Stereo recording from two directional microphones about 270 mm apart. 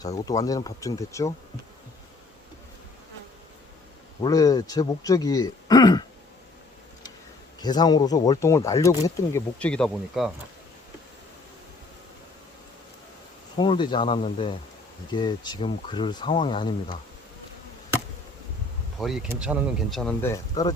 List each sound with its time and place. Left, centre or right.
0.3 s speech: centre
4.2 s speech: centre
7.6 s speech: centre
13.6 s speech: centre
18.9 s speech: centre